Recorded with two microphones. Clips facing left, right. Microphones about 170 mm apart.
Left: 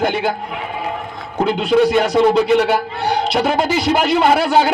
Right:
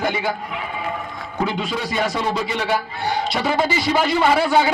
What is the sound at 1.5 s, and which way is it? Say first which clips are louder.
Speech: left 11 dB; 65° left (ahead or behind).